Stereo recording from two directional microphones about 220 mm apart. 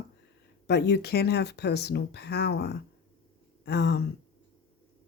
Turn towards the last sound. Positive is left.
turn(degrees=50)  # may be behind; listen again after turning